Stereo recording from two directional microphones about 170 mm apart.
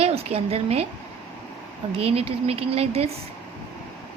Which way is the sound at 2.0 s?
35° right (ahead or behind).